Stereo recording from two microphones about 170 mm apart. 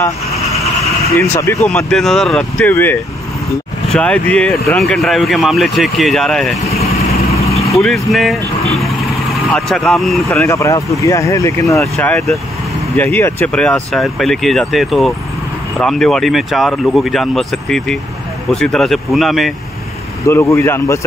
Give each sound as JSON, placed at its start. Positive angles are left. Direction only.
{"t": 1.1, "sound": "speech", "side_deg": 15}
{"t": 1.7, "sound": "speech", "side_deg": 5}
{"t": 7.4, "sound": "vehicle", "side_deg": 35}
{"t": 7.8, "sound": "speech", "side_deg": 0}
{"t": 10.4, "sound": "speech", "side_deg": 15}
{"t": 20.2, "sound": "speech", "side_deg": 15}